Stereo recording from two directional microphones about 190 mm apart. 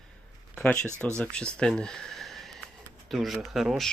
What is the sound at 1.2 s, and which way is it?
Speech, 5° left (ahead or behind).